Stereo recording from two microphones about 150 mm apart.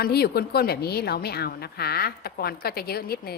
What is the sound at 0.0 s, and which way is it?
A woman's voice, 90° left.